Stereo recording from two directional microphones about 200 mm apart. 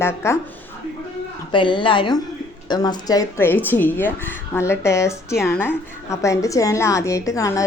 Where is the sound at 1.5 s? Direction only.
25° left (ahead or behind).